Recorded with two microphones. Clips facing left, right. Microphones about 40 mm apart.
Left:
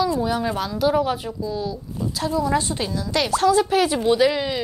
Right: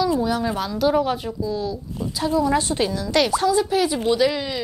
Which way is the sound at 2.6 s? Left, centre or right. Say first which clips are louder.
Right 3 dB; right.